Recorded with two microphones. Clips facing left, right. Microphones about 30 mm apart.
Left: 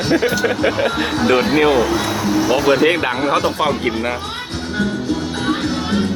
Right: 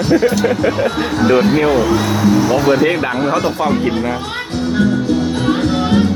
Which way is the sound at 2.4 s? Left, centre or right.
Centre.